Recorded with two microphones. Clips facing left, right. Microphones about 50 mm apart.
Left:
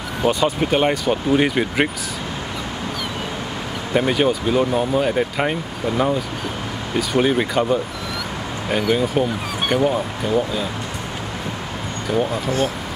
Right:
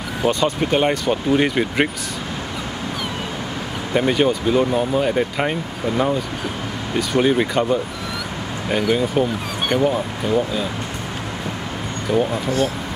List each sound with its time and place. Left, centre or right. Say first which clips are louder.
0.2 s speech: left 1 dB; centre
3.9 s speech: even; centre
12.1 s speech: right 2 dB; centre
12.4 s speech: right 1 dB; left